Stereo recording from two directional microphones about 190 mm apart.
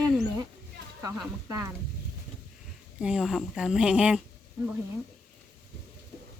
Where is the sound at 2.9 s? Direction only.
5° right (ahead or behind).